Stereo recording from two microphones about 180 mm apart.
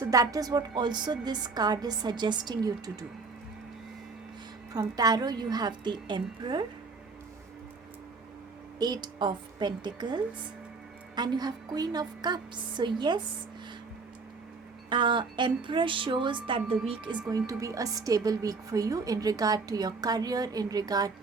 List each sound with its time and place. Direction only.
0.0 s a woman's voice: 20° right (ahead or behind)
4.7 s a woman's voice: 20° right (ahead or behind)
8.8 s a woman's voice: 25° right (ahead or behind)
14.8 s a woman's voice: 25° right (ahead or behind)
17.2 s a woman's voice: 20° right (ahead or behind)